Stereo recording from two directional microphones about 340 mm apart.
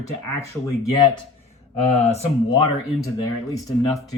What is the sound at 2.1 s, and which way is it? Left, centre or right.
Speech, centre.